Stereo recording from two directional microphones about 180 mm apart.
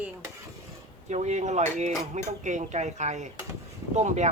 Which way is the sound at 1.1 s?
40° right (ahead or behind).